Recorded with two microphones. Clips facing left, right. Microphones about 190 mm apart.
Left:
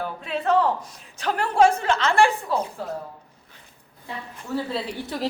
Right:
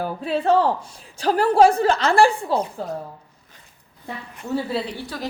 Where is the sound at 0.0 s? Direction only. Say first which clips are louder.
Right 4 dB; 35° right (ahead or behind).